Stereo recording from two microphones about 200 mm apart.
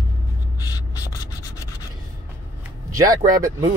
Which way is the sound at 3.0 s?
15° right (ahead or behind).